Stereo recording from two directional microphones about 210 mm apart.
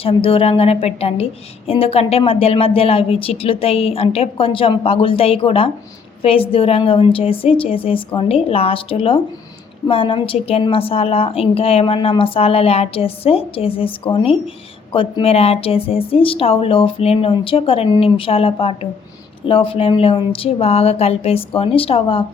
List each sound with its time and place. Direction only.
0.0 s a woman's voice: 25° left (ahead or behind)